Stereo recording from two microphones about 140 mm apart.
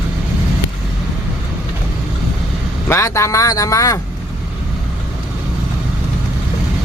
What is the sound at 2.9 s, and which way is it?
Speech, 20° left (ahead or behind).